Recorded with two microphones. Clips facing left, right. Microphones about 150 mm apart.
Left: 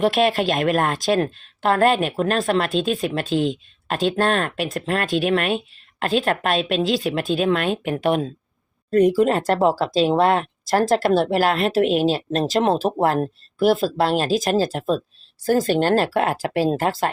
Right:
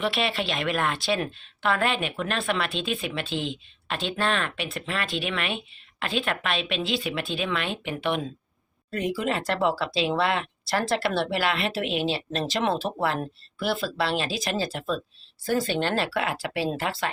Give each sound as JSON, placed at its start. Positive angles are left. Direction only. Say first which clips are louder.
{"t": 0.0, "sound": "a woman's voice", "louder": "left 9 dB", "side_deg": 45}